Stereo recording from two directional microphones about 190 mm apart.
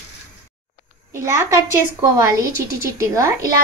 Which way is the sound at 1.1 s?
15° right (ahead or behind).